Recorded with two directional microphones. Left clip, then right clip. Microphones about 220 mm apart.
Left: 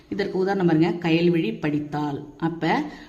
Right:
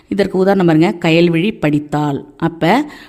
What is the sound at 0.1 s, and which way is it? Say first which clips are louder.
A woman's voice: right 10 dB; 50° right (ahead or behind).